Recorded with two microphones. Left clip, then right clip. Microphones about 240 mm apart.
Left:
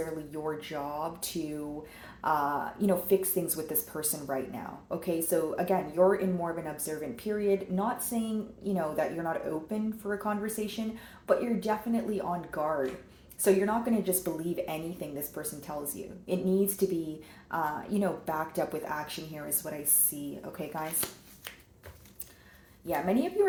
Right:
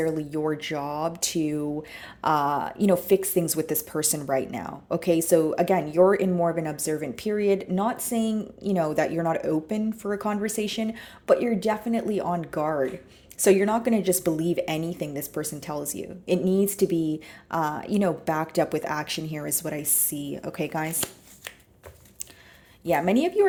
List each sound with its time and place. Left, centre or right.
0.3 s speech: right
22.9 s speech: right